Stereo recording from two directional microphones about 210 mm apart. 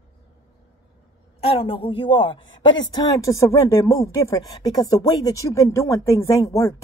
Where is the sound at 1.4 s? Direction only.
25° left (ahead or behind).